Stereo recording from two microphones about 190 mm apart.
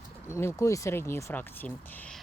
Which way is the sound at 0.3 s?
15° left (ahead or behind).